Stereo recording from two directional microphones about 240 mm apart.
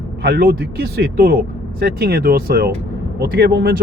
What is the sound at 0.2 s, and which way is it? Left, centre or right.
Speech, right.